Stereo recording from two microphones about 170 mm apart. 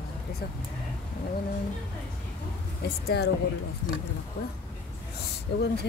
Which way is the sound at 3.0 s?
70° left (ahead or behind).